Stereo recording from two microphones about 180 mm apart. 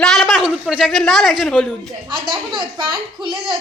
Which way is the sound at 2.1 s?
25° right (ahead or behind).